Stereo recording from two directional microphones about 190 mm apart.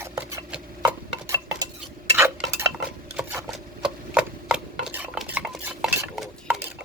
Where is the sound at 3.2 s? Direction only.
10° right (ahead or behind).